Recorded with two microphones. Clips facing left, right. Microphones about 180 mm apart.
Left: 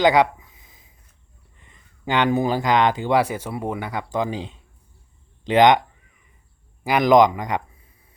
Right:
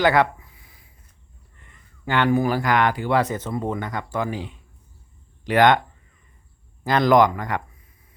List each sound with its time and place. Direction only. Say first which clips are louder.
0.0 s a sound: left 2 dB; 15° left (ahead or behind)
1.5 s speech: right 1 dB; 20° left (ahead or behind)
6.8 s speech: left 2 dB; 15° left (ahead or behind)